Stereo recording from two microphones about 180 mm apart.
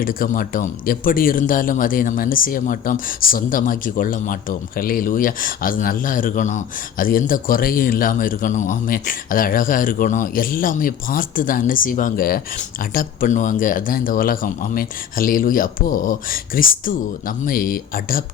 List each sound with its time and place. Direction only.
0.0 s speech: 50° left (ahead or behind)